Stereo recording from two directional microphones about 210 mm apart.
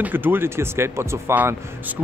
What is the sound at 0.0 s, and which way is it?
Speech, 10° right (ahead or behind).